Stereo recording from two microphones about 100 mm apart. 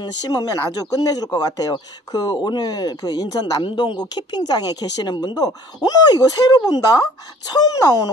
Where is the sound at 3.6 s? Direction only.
50° left (ahead or behind).